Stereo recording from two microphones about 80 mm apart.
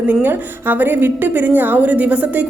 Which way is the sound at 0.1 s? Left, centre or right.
Right.